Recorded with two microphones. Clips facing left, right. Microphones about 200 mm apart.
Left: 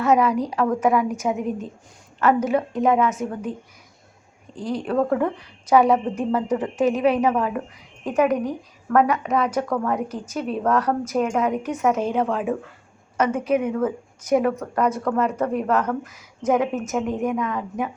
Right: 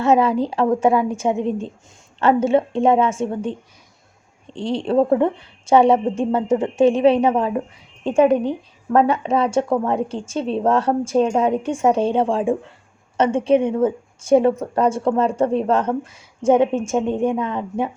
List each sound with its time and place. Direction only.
0.0 s a woman's voice: 25° right (ahead or behind)